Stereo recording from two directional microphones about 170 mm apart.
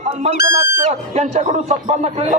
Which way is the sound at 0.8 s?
40° right (ahead or behind).